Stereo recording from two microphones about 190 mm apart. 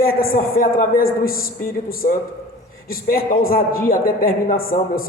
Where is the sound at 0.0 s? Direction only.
50° left (ahead or behind).